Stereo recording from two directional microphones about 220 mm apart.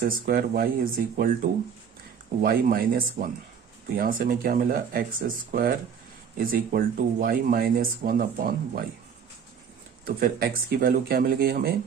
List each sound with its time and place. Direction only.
0.0 s speech: 40° right (ahead or behind)
2.4 s speech: 40° right (ahead or behind)
10.1 s speech: 45° right (ahead or behind)